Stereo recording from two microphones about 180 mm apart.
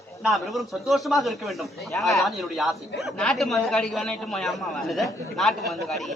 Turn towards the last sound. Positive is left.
turn(degrees=0)  # may be behind; listen again after turning